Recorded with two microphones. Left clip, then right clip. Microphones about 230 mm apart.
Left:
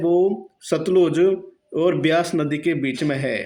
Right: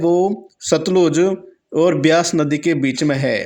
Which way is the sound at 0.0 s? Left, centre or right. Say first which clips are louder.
Right 2 dB; right.